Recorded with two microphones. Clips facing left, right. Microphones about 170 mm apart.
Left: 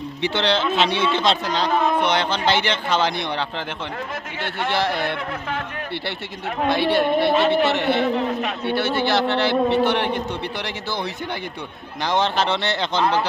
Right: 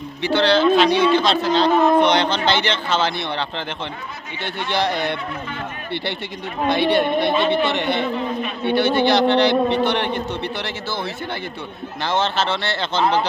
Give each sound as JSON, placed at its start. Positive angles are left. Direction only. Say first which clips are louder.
{"t": 0.2, "sound": "speech", "louder": "right 5 dB", "side_deg": 20}
{"t": 6.7, "sound": "a man's voice", "louder": "right 1 dB", "side_deg": 5}
{"t": 8.0, "sound": "a man's voice", "louder": "left 2 dB", "side_deg": 75}
{"t": 8.6, "sound": "a man's voice", "louder": "right 6 dB", "side_deg": 5}
{"t": 12.0, "sound": "speech", "louder": "even", "side_deg": 15}
{"t": 13.0, "sound": "speech", "louder": "right 2 dB", "side_deg": -20}